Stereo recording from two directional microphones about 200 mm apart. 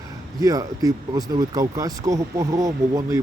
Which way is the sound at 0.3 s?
20° right (ahead or behind).